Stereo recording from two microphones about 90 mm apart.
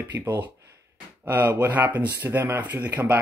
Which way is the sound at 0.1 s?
25° right (ahead or behind).